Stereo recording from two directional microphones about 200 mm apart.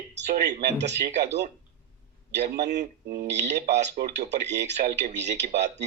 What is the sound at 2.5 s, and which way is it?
Speech, 60° right (ahead or behind).